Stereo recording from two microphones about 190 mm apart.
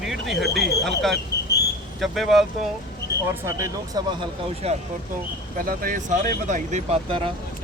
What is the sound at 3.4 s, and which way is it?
Speech, 15° right (ahead or behind).